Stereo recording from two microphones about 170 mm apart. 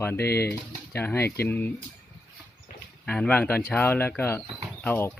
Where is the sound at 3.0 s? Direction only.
10° left (ahead or behind).